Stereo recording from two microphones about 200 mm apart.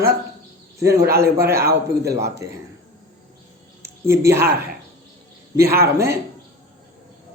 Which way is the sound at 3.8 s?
15° right (ahead or behind).